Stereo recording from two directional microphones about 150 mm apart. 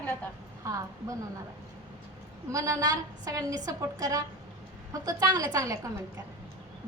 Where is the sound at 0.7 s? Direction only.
20° right (ahead or behind).